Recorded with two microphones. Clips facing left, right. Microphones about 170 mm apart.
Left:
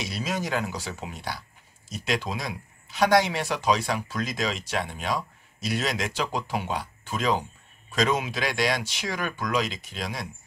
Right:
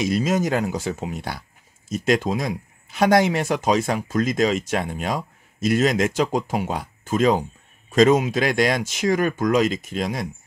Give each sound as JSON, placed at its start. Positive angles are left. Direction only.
{"t": 0.0, "sound": "speech", "side_deg": -45}